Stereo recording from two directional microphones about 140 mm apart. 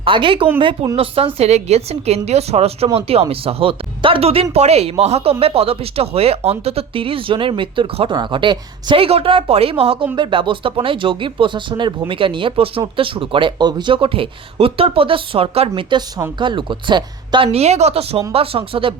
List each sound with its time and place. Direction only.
0.0 s speech: 35° right (ahead or behind)